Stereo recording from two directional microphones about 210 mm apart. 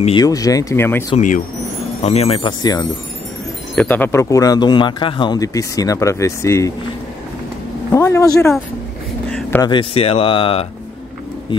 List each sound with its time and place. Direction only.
0.0 s speech: 20° left (ahead or behind)
1.1 s speech: 40° left (ahead or behind); by 2.9 s 20° left (ahead or behind)
3.7 s speech: 5° left (ahead or behind)
7.9 s a man's voice: 15° left (ahead or behind)
9.3 s a sound: 10° left (ahead or behind)
9.7 s speech: 25° left (ahead or behind)